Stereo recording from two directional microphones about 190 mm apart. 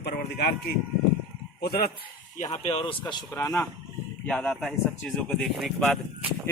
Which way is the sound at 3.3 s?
15° left (ahead or behind).